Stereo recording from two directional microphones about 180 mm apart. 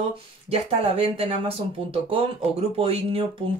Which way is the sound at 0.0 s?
35° right (ahead or behind).